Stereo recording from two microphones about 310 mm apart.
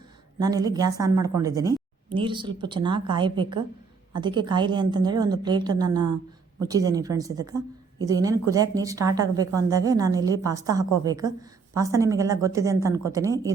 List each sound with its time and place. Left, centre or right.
0.4 s speech: centre